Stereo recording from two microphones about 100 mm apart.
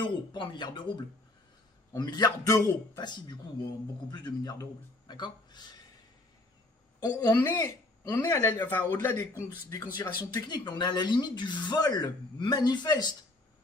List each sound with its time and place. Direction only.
0.0 s speech: 50° left (ahead or behind)
7.0 s speech: 40° left (ahead or behind)
7.5 s speech: 25° left (ahead or behind)
8.6 s speech: 20° left (ahead or behind)
9.6 s speech: 35° left (ahead or behind)
10.3 s speech: 45° left (ahead or behind)